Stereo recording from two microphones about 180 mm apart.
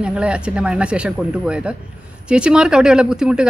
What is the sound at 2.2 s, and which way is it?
Speech, 5° right (ahead or behind).